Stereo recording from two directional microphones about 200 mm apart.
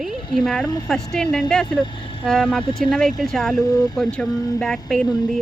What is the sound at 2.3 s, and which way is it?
Speech, centre (ahead or behind).